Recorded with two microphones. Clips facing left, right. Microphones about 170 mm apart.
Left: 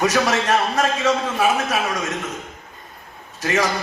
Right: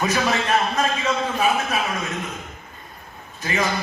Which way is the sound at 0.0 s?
75° left (ahead or behind).